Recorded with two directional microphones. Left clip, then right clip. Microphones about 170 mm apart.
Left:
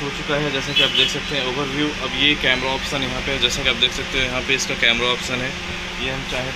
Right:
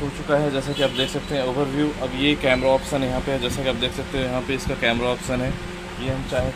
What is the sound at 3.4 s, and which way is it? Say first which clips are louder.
Speech: left 6 dB; 70° right (ahead or behind).